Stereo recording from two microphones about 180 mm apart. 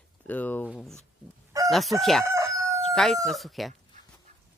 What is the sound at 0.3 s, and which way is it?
Speech, 10° left (ahead or behind).